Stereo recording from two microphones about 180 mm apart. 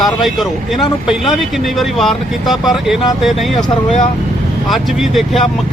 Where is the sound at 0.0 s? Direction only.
Centre (ahead or behind).